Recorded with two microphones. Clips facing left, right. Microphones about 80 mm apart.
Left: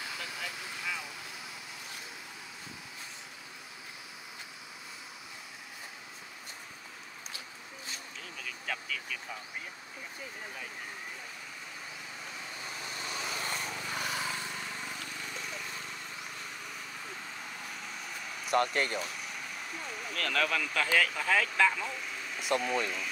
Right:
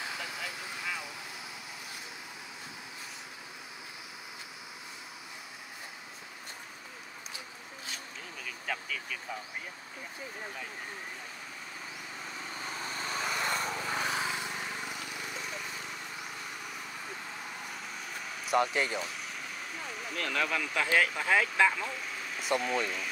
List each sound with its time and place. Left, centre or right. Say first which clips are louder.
0.4 s vehicle: right 1 dB; centre
8.5 s vehicle: right 1 dB; centre
12.7 s vehicle: right 4 dB; right; by 15.6 s centre
18.4 s speech: even; centre
20.2 s speech: left 1 dB; centre
22.4 s speech: even; centre